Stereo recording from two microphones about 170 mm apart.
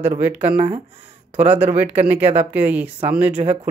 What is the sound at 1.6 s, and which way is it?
Speech, 10° right (ahead or behind).